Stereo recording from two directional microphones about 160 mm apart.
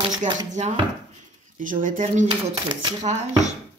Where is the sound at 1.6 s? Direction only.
55° right (ahead or behind).